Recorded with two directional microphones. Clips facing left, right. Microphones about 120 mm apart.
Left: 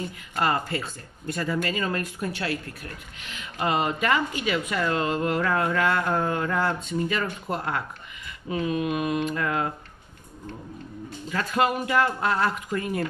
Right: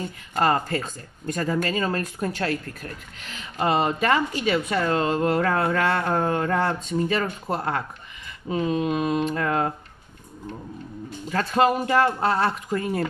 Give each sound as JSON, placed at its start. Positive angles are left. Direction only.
{"t": 0.4, "sound": "speech", "side_deg": -40}
{"t": 8.5, "sound": "a sound", "side_deg": -30}
{"t": 11.2, "sound": "speech", "side_deg": -35}